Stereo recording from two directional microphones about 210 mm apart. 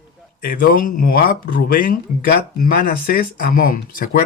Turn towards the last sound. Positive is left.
turn(degrees=45)  # may be behind; listen again after turning